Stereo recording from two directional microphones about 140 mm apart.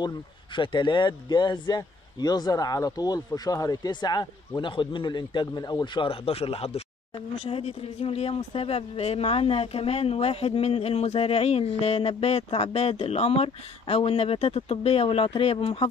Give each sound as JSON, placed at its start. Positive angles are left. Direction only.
{"t": 0.6, "sound": "speech", "side_deg": 35}
{"t": 6.0, "sound": "speech", "side_deg": 45}